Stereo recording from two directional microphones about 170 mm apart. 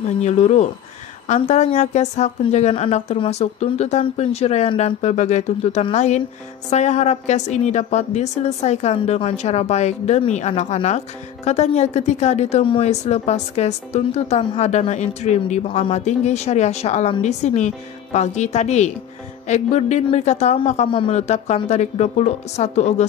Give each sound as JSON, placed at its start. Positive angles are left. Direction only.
{"t": 0.2, "sound": "speech", "side_deg": 40}